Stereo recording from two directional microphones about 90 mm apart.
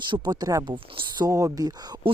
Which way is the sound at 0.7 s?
85° right.